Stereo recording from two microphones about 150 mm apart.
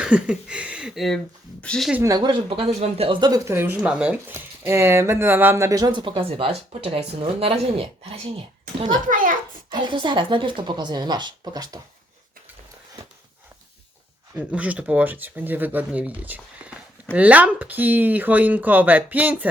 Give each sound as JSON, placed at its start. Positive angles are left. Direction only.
{"t": 0.0, "sound": "speech", "side_deg": -5}
{"t": 2.0, "sound": "speech", "side_deg": -30}
{"t": 3.8, "sound": "speech", "side_deg": -5}
{"t": 9.0, "sound": "a child's voice", "side_deg": -65}
{"t": 9.6, "sound": "speech", "side_deg": -30}
{"t": 14.3, "sound": "speech", "side_deg": -10}